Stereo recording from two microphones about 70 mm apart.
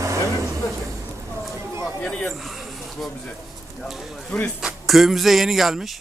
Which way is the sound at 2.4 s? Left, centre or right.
Centre.